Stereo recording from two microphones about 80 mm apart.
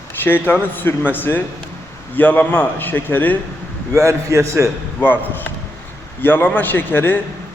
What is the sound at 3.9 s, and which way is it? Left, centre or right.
Speech, right.